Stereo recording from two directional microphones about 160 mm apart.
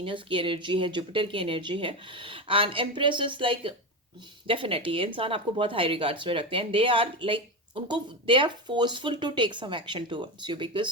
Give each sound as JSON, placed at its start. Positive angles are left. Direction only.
{"t": 0.0, "sound": "speech", "side_deg": -35}